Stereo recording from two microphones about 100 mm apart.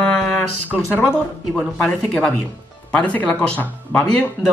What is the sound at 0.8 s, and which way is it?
Speech, 25° left (ahead or behind).